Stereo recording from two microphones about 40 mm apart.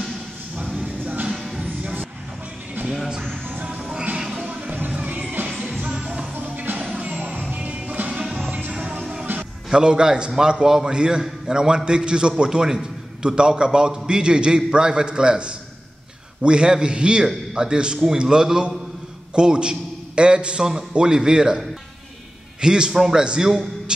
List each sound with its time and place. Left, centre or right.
0.8 s music: right
1.3 s music: centre
2.9 s music: centre
3.6 s music: right
4.4 s music: right
5.0 s music: right
6.3 s music: right
6.9 s music: right
9.2 s music: right
9.7 s a man's voice: right